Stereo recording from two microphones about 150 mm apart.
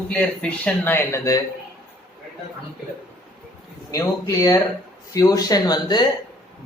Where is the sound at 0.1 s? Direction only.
10° left (ahead or behind).